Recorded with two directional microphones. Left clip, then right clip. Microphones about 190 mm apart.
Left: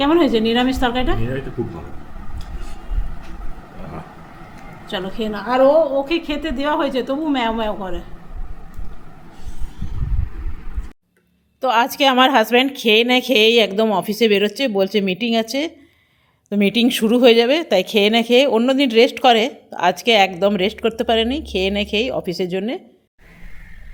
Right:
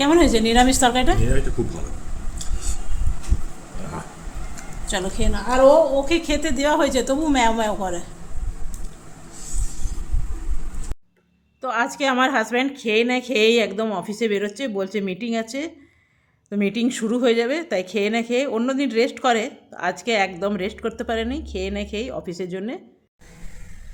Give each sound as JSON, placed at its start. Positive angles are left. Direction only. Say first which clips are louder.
{"t": 0.0, "sound": "a woman's voice", "louder": "left 1 dB", "side_deg": 5}
{"t": 4.9, "sound": "a woman's voice", "louder": "left 1 dB", "side_deg": 0}
{"t": 5.3, "sound": "a woman's voice", "louder": "even", "side_deg": 15}
{"t": 6.1, "sound": "a woman's voice", "louder": "even", "side_deg": 5}
{"t": 11.6, "sound": "speech", "louder": "left 7 dB", "side_deg": 25}